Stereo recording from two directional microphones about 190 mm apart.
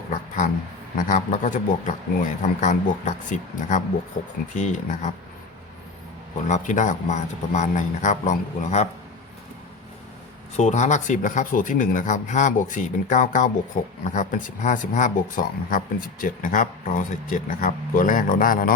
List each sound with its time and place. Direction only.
0.9 s speech: 40° left (ahead or behind)
6.5 s speech: 40° left (ahead or behind)
10.6 s speech: 40° left (ahead or behind)